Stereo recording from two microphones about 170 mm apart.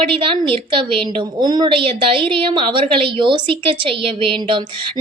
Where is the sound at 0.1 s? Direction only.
30° right (ahead or behind).